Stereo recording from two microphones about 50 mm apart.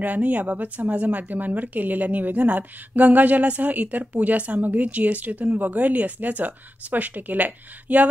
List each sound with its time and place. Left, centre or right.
0.0 s speech: right